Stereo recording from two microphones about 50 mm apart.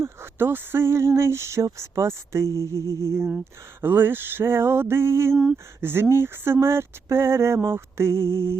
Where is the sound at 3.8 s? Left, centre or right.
Right.